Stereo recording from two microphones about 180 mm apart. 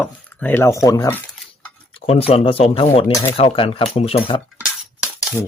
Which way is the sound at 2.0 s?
35° left (ahead or behind).